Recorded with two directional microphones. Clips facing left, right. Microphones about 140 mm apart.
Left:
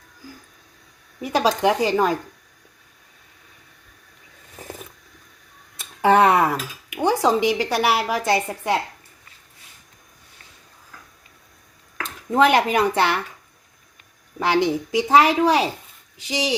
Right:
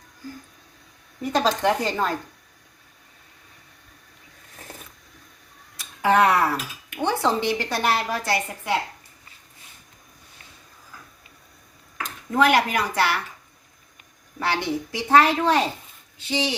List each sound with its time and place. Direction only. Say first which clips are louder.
1.2 s a woman's voice: left 2 dB; 10° left (ahead or behind)
4.6 s a sound: left 6 dB; 15° left (ahead or behind)
5.7 s speech: left 3 dB; 25° left (ahead or behind); by 8.2 s 10° left (ahead or behind)
12.3 s a woman's voice: left 3 dB; 25° left (ahead or behind)
14.3 s a woman's voice: left 5 dB; 15° left (ahead or behind)